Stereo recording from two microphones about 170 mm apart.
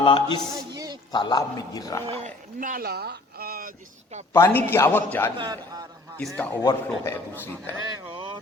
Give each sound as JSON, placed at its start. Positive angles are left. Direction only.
{"t": 0.0, "sound": "speech", "side_deg": 30}
{"t": 0.5, "sound": "a sound", "side_deg": -25}
{"t": 1.1, "sound": "a man's voice", "side_deg": 25}
{"t": 2.0, "sound": "speech", "side_deg": -35}
{"t": 2.6, "sound": "speech", "side_deg": -55}
{"t": 4.4, "sound": "a man's voice", "side_deg": 15}
{"t": 5.4, "sound": "a man's voice", "side_deg": -20}
{"t": 6.1, "sound": "a man's voice", "side_deg": 5}